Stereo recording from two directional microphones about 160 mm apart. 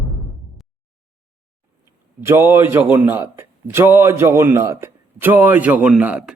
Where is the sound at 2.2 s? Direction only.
15° right (ahead or behind).